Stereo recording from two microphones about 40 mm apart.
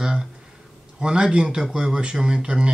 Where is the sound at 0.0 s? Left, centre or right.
Centre.